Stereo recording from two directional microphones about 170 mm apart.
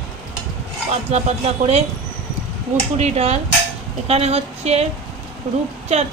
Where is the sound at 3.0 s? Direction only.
40° right (ahead or behind).